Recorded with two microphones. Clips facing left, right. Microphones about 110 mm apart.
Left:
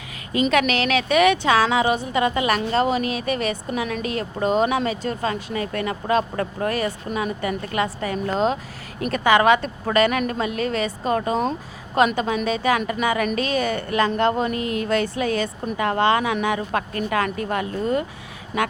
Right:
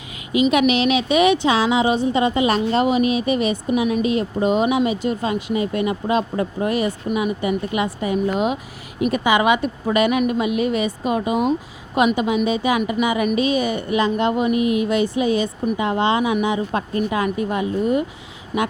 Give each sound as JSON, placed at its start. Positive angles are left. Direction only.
{"t": 0.3, "sound": "a woman's voice", "side_deg": -10}